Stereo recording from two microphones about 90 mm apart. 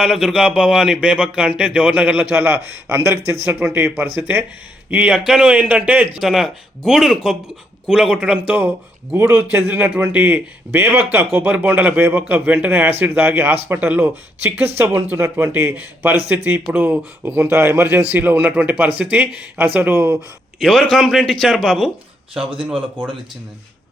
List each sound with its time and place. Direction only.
0.0 s a man's voice: 5° right (ahead or behind)
6.1 s speech: 5° right (ahead or behind)
9.1 s a man's voice: 30° right (ahead or behind)
17.2 s a man's voice: 25° right (ahead or behind)
20.6 s a man's voice: centre (ahead or behind)